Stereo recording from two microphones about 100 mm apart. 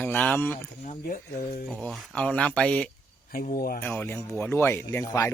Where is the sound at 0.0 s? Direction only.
15° left (ahead or behind).